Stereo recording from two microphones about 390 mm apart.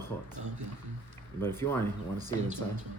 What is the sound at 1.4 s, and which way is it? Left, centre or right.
Speech, centre.